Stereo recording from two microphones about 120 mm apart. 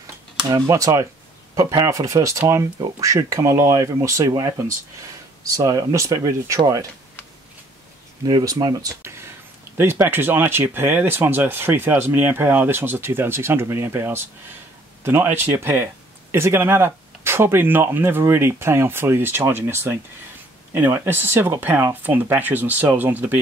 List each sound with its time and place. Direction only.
0.0 s a sound: 30° right (ahead or behind)
1.5 s speech: 25° right (ahead or behind)
8.3 s speech: 30° right (ahead or behind); by 23.4 s 15° right (ahead or behind)